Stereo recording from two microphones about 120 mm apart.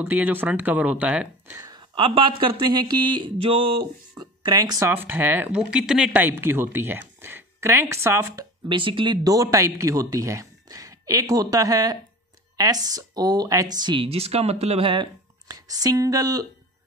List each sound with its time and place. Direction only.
0.0 s speech: 15° right (ahead or behind)
1.5 s a sound: 30° right (ahead or behind)
2.0 s speech: 45° right (ahead or behind)
4.2 s speech: 35° right (ahead or behind)
8.6 s speech: 45° right (ahead or behind)
14.0 s speech: 55° right (ahead or behind); by 16.4 s 30° right (ahead or behind)